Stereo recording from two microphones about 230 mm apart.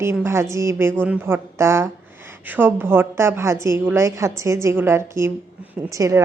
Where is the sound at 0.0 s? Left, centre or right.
Centre.